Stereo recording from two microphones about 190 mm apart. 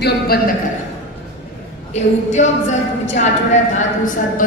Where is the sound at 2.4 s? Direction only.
40° left (ahead or behind).